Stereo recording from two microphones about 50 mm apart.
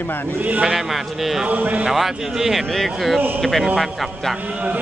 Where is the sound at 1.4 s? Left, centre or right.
Right.